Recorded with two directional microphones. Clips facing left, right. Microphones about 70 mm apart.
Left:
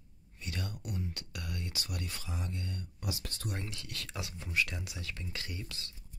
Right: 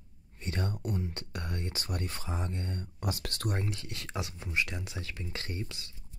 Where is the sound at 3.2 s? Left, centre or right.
Right.